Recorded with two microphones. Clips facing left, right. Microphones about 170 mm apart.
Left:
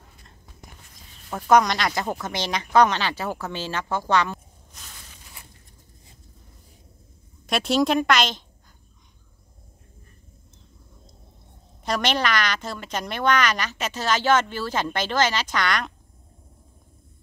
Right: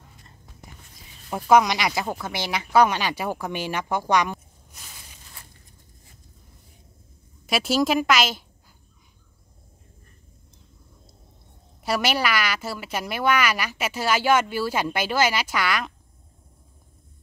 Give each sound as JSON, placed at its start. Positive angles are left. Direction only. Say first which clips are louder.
{"t": 1.3, "sound": "speech", "louder": "even", "side_deg": -5}
{"t": 7.4, "sound": "a woman's voice", "louder": "left 1 dB", "side_deg": -5}
{"t": 11.8, "sound": "a woman's voice", "louder": "even", "side_deg": -5}